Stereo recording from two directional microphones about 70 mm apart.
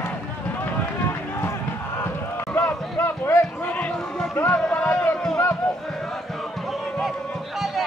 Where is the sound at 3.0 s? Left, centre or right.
Left.